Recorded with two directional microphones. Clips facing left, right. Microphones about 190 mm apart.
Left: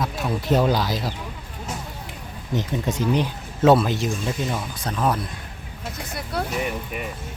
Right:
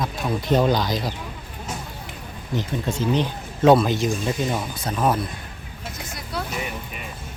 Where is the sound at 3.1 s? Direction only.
5° left (ahead or behind).